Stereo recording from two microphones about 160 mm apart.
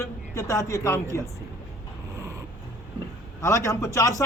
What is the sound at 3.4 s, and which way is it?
Speech, 15° left (ahead or behind).